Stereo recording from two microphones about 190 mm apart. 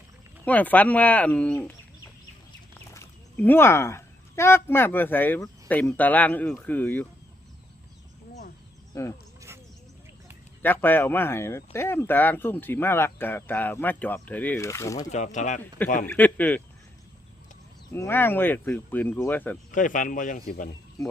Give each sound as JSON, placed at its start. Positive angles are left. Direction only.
{"t": 0.4, "sound": "speech", "side_deg": 10}
{"t": 2.9, "sound": "speech", "side_deg": 10}
{"t": 10.6, "sound": "speech", "side_deg": 10}
{"t": 15.1, "sound": "speech", "side_deg": 40}
{"t": 16.0, "sound": "speech", "side_deg": 10}
{"t": 17.9, "sound": "speech", "side_deg": 10}
{"t": 19.7, "sound": "speech", "side_deg": 45}